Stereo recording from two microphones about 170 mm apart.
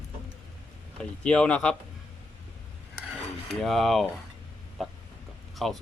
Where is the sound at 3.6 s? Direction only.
Centre (ahead or behind).